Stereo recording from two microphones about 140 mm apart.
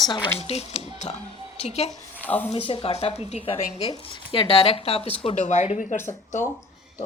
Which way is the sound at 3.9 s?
40° left (ahead or behind).